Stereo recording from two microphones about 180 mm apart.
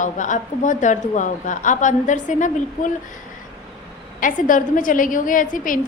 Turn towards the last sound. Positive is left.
turn(degrees=50)  # may be behind; listen again after turning